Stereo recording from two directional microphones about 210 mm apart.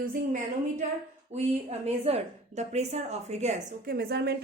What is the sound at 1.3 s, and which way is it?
A woman's voice, 30° right (ahead or behind).